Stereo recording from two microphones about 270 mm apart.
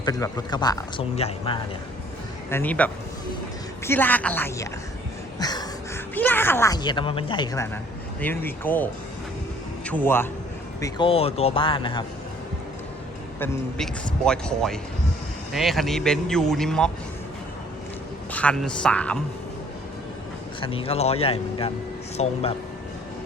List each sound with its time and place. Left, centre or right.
0.0 s speech: centre
2.5 s speech: centre
5.4 s a sound: centre
6.1 s a man's voice: centre
13.4 s speech: centre
18.3 s speech: centre
20.6 s speech: centre